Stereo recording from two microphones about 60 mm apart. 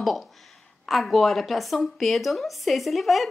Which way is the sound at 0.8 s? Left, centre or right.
Centre.